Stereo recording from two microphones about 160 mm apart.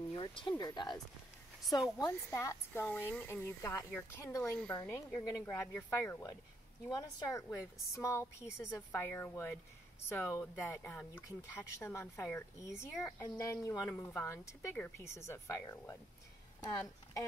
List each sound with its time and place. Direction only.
0.1 s speech: 30° left (ahead or behind)
2.0 s speech: 15° left (ahead or behind)
11.2 s speech: 15° left (ahead or behind)